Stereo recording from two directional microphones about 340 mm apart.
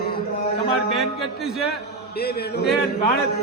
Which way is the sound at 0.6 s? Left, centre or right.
Centre.